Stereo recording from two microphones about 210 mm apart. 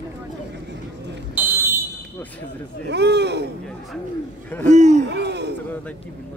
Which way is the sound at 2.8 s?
55° right (ahead or behind).